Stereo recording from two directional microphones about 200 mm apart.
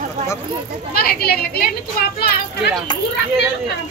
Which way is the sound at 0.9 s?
50° left (ahead or behind).